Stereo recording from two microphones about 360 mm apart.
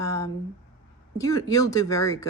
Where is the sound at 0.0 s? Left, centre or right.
Centre.